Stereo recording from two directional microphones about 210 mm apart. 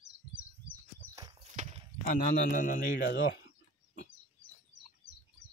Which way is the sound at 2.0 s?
40° left (ahead or behind).